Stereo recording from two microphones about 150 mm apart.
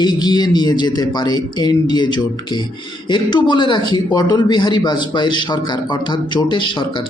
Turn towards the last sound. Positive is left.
turn(degrees=35)  # may be behind; listen again after turning